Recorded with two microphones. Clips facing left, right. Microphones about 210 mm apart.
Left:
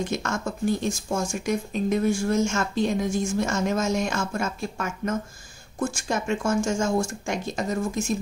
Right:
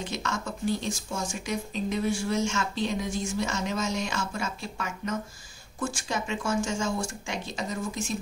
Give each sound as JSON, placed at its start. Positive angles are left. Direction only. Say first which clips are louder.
{"t": 0.0, "sound": "speech", "louder": "left 5 dB", "side_deg": 50}